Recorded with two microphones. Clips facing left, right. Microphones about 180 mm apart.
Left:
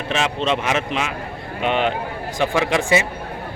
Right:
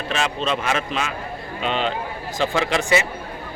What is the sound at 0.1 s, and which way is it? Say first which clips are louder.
A man's voice: left 3 dB; 20° left (ahead or behind).